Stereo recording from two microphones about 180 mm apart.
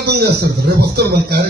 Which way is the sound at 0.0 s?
65° right (ahead or behind).